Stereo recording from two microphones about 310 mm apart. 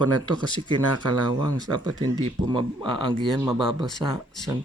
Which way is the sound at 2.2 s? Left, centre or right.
Centre.